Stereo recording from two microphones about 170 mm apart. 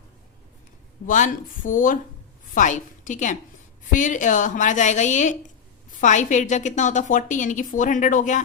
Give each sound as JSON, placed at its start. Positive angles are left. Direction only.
{"t": 1.0, "sound": "a woman's voice", "side_deg": 50}